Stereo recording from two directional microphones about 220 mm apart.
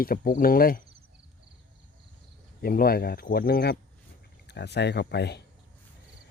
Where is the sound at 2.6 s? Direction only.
40° left (ahead or behind).